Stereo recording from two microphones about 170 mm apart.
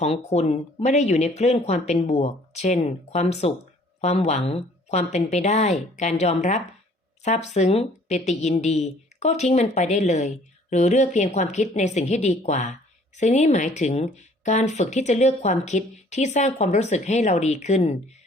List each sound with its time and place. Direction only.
0.0 s a woman's voice: 40° left (ahead or behind)